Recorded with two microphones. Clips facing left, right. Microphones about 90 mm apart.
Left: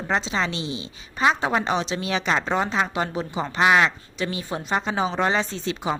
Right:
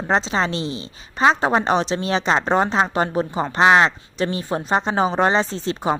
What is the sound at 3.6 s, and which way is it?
Speech, 30° right (ahead or behind).